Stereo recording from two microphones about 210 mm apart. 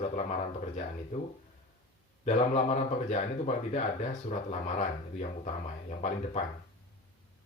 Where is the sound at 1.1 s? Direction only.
35° left (ahead or behind).